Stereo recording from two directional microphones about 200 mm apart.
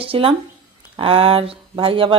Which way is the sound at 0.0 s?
30° right (ahead or behind).